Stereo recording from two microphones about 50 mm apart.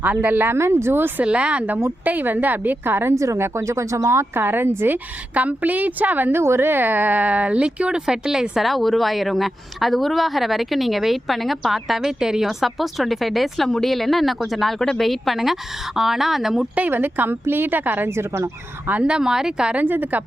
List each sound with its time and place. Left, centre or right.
0.0 s a woman's voice: right
0.5 s a woman's voice: right
1.2 s speech: right
2.0 s a woman's voice: right
3.2 s speech: right
4.4 s a woman's voice: right
5.3 s a woman's voice: right
6.3 s speech: right; by 8.6 s centre
8.6 s speech: centre
16.9 s a woman's voice: right
18.1 s a woman's voice: right
19.0 s speech: centre
19.7 s a woman's voice: right